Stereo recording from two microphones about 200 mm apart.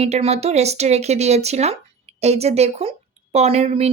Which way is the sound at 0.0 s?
30° right (ahead or behind).